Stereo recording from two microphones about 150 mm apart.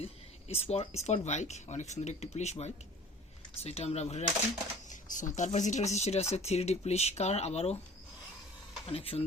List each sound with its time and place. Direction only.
0.0 s speech: 45° left (ahead or behind)
4.9 s speech: 55° left (ahead or behind)
8.9 s speech: 40° left (ahead or behind)